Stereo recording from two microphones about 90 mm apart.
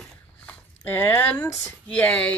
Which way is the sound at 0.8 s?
20° left (ahead or behind).